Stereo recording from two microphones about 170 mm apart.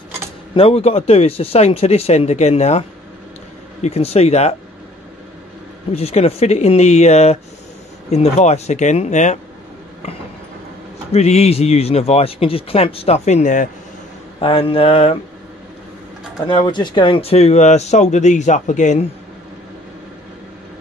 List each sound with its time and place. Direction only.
0.6 s speech: 35° left (ahead or behind)
3.8 s speech: 35° left (ahead or behind)
5.9 s speech: 35° left (ahead or behind)
11.1 s speech: 40° left (ahead or behind)
14.4 s speech: 35° left (ahead or behind)
16.4 s speech: 30° left (ahead or behind); by 19.0 s 45° left (ahead or behind)